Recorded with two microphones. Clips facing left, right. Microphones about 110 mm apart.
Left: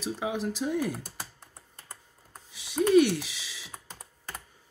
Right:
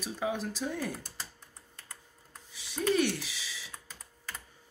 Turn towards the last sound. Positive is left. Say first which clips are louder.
# even
turn(degrees=15)  # may be behind; listen again after turning